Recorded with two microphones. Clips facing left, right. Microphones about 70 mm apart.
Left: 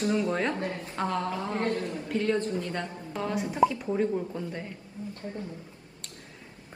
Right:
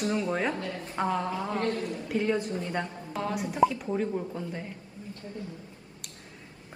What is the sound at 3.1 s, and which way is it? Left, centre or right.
Speech, centre.